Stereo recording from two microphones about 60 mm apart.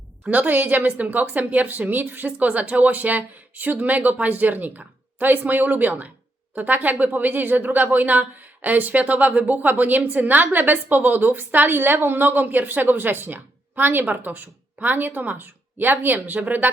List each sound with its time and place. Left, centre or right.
0.3 s a woman's voice: right